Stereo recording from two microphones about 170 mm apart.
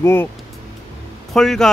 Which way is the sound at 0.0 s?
15° left (ahead or behind).